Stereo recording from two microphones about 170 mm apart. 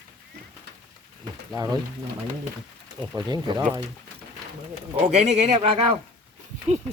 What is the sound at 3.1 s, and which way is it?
Speech, 25° right (ahead or behind).